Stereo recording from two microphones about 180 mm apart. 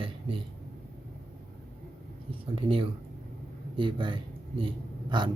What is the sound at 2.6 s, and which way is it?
A man's voice, 30° right (ahead or behind).